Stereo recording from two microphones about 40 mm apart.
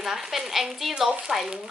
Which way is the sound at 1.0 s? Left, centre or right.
Centre.